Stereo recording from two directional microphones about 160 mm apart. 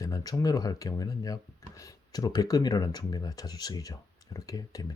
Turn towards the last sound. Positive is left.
turn(degrees=20)  # may be behind; listen again after turning